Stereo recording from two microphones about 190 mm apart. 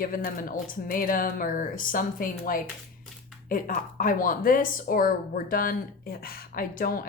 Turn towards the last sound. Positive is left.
turn(degrees=50)  # may be behind; listen again after turning